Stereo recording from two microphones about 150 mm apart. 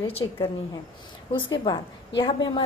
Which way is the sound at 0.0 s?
40° left (ahead or behind).